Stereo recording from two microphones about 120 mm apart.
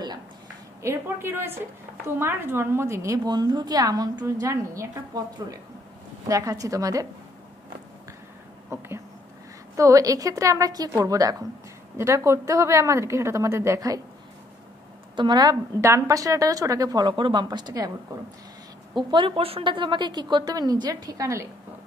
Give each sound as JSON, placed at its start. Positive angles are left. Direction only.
{"t": 0.8, "sound": "a woman's voice", "side_deg": -20}
{"t": 8.6, "sound": "a woman's voice", "side_deg": -25}
{"t": 15.1, "sound": "a woman's voice", "side_deg": -35}
{"t": 18.9, "sound": "a woman's voice", "side_deg": -40}